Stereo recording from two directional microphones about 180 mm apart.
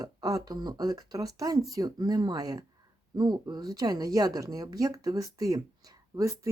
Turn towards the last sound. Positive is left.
turn(degrees=-15)  # may be behind; listen again after turning